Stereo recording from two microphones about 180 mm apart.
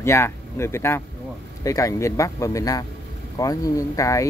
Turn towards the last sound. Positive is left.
turn(degrees=15)  # may be behind; listen again after turning